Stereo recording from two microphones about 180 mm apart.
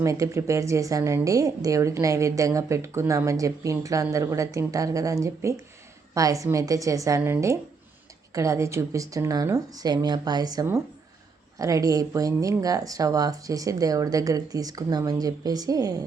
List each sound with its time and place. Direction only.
0.0 s a woman's voice: 15° right (ahead or behind)